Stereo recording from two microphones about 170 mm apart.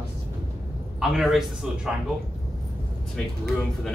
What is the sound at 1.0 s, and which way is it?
Speech, centre (ahead or behind).